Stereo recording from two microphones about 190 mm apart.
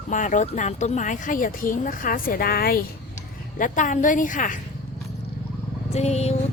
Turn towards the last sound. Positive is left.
turn(degrees=35)  # may be behind; listen again after turning